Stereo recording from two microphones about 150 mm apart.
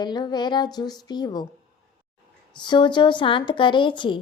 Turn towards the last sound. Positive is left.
turn(degrees=30)  # may be behind; listen again after turning